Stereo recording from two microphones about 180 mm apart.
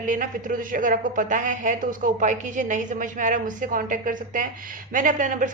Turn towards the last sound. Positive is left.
turn(degrees=-50)  # may be behind; listen again after turning